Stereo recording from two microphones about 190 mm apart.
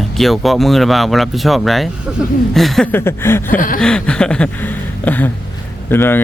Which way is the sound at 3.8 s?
5° left (ahead or behind).